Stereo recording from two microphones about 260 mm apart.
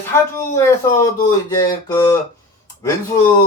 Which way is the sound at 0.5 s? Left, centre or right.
Centre.